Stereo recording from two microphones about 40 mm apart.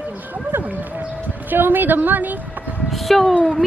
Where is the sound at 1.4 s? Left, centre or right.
Right.